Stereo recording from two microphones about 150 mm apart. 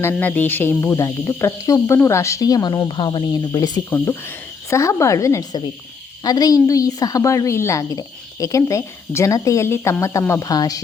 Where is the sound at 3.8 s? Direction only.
20° left (ahead or behind).